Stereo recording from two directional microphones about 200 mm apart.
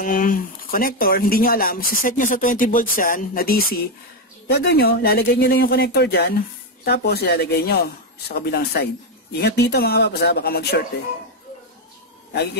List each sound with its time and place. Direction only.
0.0 s speech: 40° left (ahead or behind)